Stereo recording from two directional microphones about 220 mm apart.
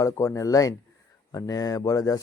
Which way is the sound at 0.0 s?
15° left (ahead or behind).